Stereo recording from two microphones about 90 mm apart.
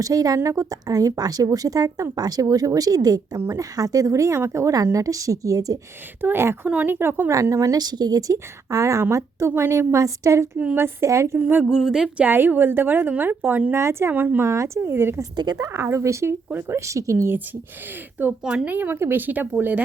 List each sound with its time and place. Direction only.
0.0 s a woman's voice: 40° right (ahead or behind)
6.2 s speech: 30° right (ahead or behind)
7.3 s speech: 40° right (ahead or behind)
11.3 s speech: 20° right (ahead or behind)
11.7 s speech: 5° right (ahead or behind)
12.2 s speech: 20° right (ahead or behind)
15.4 s speech: 45° right (ahead or behind)
18.2 s speech: 15° right (ahead or behind)